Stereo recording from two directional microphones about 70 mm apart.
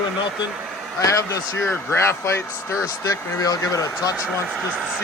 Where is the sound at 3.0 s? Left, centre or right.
Left.